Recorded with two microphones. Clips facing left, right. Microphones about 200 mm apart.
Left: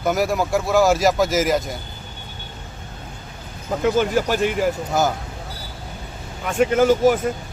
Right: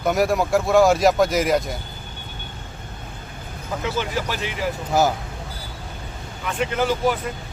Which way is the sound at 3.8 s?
50° left (ahead or behind).